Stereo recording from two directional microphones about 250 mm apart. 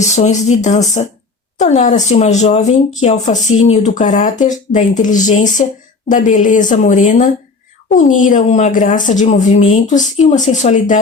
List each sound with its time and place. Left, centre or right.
0.0 s speech: left